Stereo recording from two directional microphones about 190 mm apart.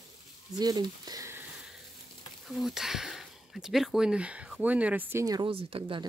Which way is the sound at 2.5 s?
Centre (ahead or behind).